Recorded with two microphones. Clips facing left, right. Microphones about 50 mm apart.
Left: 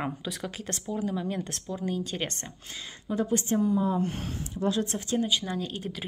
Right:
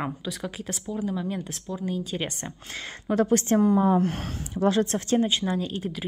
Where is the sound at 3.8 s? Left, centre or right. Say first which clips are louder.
Right 6 dB; right.